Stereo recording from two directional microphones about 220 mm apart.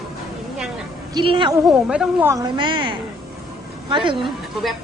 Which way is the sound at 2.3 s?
20° right (ahead or behind).